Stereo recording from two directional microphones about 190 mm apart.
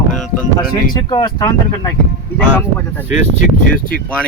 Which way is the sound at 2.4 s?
10° left (ahead or behind).